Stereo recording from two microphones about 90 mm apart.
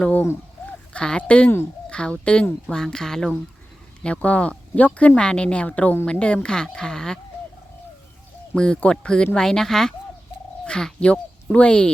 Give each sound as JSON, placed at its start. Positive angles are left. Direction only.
{"t": 0.0, "sound": "speech", "side_deg": 15}
{"t": 8.5, "sound": "speech", "side_deg": 10}